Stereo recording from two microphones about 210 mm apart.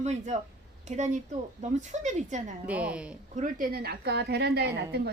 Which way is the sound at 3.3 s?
40° right (ahead or behind).